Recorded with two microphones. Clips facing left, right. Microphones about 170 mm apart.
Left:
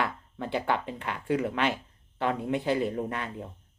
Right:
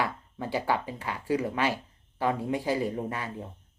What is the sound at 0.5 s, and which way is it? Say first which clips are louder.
Speech: even; 10° right (ahead or behind).